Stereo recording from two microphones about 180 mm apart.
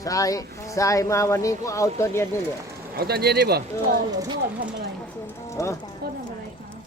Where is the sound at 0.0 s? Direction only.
20° left (ahead or behind).